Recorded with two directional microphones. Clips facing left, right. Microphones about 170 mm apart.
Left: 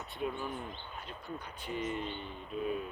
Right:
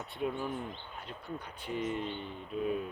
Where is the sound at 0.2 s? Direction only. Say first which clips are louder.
Right 2 dB; 65° right (ahead or behind).